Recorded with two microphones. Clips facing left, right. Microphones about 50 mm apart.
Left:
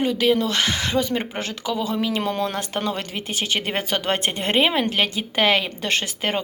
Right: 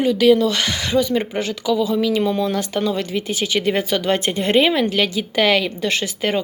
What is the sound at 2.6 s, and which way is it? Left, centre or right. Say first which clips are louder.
Speech: right 5 dB; left.